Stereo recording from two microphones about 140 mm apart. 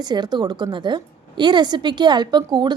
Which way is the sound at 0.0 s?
30° right (ahead or behind).